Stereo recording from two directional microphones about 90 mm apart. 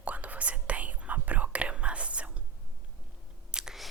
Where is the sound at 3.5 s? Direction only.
5° right (ahead or behind).